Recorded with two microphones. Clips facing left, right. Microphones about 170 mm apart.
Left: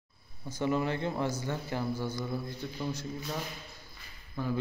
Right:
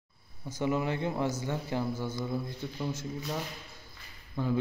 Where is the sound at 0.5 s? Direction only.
15° right (ahead or behind).